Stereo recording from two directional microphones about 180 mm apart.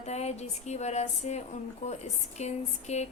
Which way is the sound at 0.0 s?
35° left (ahead or behind).